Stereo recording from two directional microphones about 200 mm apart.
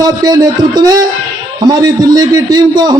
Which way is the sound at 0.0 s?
20° right (ahead or behind).